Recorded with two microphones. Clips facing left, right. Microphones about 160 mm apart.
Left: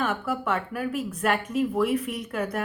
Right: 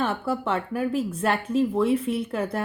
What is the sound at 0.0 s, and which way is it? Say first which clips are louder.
Speech: right 2 dB; 30° right (ahead or behind).